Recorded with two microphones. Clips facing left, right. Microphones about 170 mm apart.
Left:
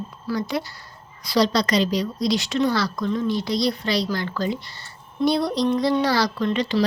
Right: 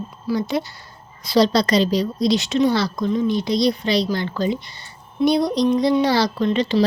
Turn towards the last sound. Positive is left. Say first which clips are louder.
# right 3 dB
turn(degrees=-25)  # may be behind; listen again after turning